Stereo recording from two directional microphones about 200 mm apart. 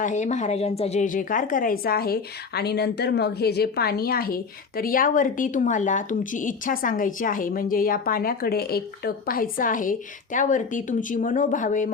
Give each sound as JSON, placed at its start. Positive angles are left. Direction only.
{"t": 0.0, "sound": "a woman's voice", "side_deg": 35}